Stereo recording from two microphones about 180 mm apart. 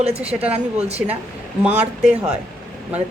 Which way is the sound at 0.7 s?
35° right (ahead or behind).